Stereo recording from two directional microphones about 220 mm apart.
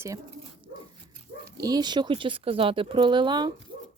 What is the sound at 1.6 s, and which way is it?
Speech, 15° right (ahead or behind).